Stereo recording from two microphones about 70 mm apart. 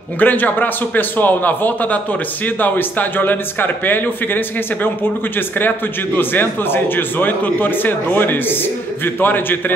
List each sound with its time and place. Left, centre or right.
0.2 s a man's voice: left
6.1 s a man's voice: left